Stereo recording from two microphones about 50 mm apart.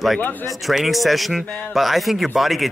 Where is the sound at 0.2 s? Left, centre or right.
Left.